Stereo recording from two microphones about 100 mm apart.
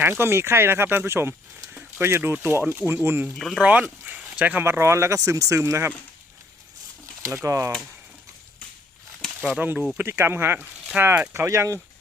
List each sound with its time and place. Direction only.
0.0 s speech: 25° right (ahead or behind)
3.3 s speech: 5° right (ahead or behind); by 5.9 s 30° right (ahead or behind)
7.3 s speech: 30° right (ahead or behind)
9.6 s speech: 15° right (ahead or behind)